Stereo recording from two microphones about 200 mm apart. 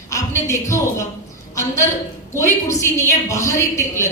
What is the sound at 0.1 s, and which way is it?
A woman's voice, 15° left (ahead or behind).